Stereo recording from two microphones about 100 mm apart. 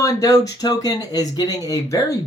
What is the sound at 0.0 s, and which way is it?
Speech, 35° left (ahead or behind).